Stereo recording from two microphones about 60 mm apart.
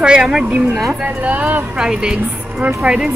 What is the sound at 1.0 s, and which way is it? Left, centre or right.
Speech, right.